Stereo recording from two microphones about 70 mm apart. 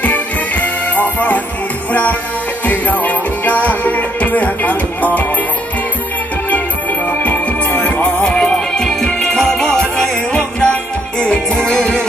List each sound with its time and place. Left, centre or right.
0.0 s music: left
6.5 s music: left